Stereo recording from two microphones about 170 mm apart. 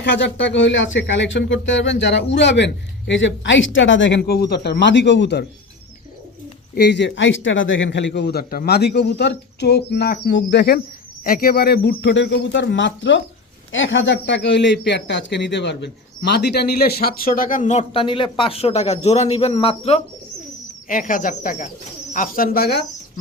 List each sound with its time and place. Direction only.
0.0 s speech: 90° left
6.7 s a man's voice: 85° left
11.2 s speech: 55° left (ahead or behind); by 20.0 s 35° left (ahead or behind)
20.8 s speech: 50° left (ahead or behind)